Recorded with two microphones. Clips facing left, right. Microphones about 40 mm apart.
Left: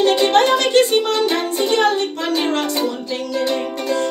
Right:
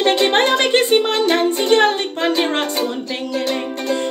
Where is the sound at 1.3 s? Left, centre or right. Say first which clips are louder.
Right 3 dB; right.